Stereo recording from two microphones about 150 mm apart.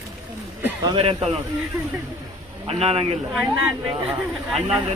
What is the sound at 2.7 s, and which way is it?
Speech, 45° right (ahead or behind).